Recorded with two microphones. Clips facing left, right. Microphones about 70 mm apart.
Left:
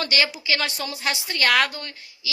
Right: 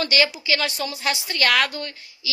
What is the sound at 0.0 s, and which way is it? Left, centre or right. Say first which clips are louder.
A woman's voice: right 2 dB; left.